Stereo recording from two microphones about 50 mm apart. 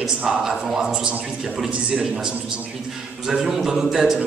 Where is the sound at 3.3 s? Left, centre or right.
Centre.